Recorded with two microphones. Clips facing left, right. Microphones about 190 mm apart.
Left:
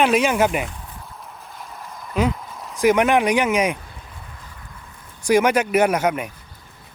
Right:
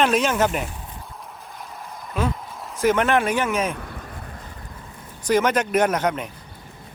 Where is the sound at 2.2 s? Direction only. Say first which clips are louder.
Left 4 dB; 15° left (ahead or behind).